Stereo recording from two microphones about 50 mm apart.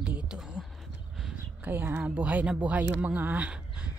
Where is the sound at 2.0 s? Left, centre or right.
Right.